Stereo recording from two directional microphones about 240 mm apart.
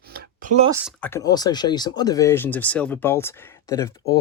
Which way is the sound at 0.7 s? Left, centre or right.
Centre.